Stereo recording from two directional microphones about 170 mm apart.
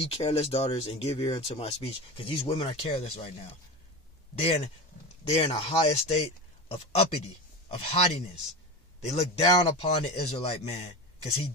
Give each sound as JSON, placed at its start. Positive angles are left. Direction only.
{"t": 0.0, "sound": "speech", "side_deg": 35}
{"t": 4.4, "sound": "speech", "side_deg": 40}
{"t": 9.4, "sound": "speech", "side_deg": 20}
{"t": 10.0, "sound": "speech", "side_deg": 35}